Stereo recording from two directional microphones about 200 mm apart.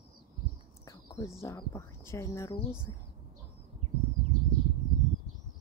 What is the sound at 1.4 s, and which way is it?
Speech, 15° left (ahead or behind).